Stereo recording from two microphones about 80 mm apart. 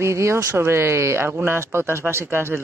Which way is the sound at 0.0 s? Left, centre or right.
Right.